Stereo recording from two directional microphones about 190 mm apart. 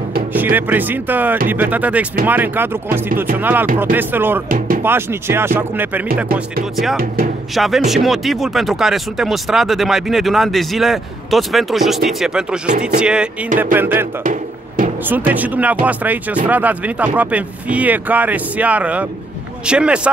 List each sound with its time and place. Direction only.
0.3 s speech: 10° right (ahead or behind)
4.5 s music: 45° right (ahead or behind)
4.8 s speech: 10° right (ahead or behind)
14.2 s a sound: 45° right (ahead or behind)
15.0 s speech: 10° right (ahead or behind)